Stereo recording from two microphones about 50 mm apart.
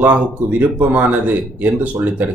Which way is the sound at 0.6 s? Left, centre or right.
Right.